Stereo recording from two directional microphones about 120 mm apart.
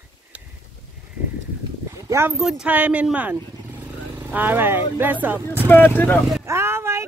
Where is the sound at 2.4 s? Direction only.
10° right (ahead or behind).